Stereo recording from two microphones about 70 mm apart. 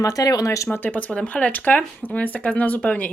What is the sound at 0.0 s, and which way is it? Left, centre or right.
Speech, left.